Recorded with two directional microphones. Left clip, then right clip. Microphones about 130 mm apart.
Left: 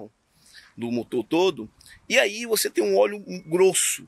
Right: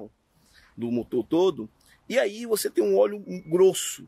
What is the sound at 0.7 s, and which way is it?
Speech, 20° right (ahead or behind).